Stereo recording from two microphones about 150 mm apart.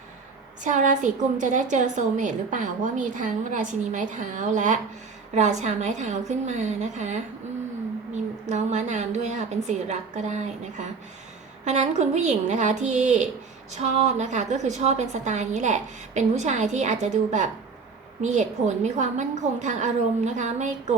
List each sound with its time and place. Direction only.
0.6 s a woman's voice: 55° right (ahead or behind)